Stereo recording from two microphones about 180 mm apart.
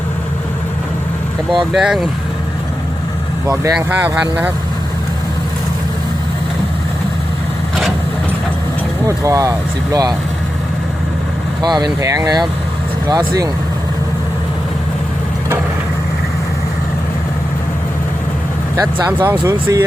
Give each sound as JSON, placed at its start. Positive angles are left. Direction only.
{"t": 1.7, "sound": "speech", "side_deg": 0}
{"t": 3.4, "sound": "speech", "side_deg": -15}
{"t": 9.0, "sound": "speech", "side_deg": -15}
{"t": 11.6, "sound": "speech", "side_deg": -20}
{"t": 18.8, "sound": "speech", "side_deg": -15}